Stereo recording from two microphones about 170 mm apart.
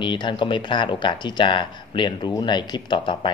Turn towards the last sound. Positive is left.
turn(degrees=25)  # may be behind; listen again after turning